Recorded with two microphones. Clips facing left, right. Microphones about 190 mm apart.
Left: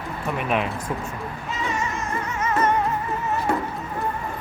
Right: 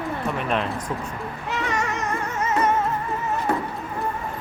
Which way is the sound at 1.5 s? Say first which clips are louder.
Right 2 dB; 70° right (ahead or behind).